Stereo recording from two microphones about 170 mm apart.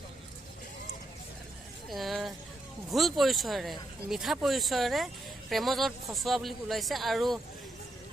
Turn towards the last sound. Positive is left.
turn(degrees=0)  # may be behind; listen again after turning